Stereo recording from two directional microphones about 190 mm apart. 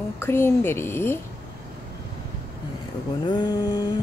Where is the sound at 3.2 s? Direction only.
20° left (ahead or behind).